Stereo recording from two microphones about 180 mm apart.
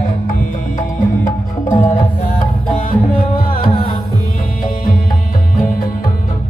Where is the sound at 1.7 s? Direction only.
15° left (ahead or behind).